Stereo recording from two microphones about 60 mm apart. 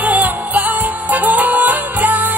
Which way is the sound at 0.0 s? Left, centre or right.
Right.